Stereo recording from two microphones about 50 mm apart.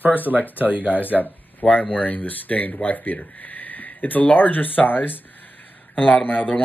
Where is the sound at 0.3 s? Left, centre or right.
Right.